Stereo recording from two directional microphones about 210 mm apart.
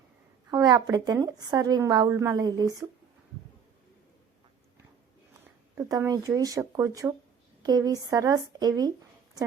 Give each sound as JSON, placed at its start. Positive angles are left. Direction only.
{"t": 0.5, "sound": "a woman's voice", "side_deg": -20}
{"t": 5.7, "sound": "a woman's voice", "side_deg": -15}